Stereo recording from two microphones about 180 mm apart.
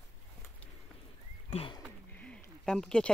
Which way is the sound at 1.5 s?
30° left (ahead or behind).